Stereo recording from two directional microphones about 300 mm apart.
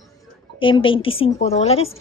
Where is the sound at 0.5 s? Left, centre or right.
Centre.